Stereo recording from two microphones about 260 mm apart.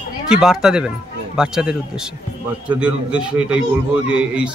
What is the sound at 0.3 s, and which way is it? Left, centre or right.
A man's voice, centre.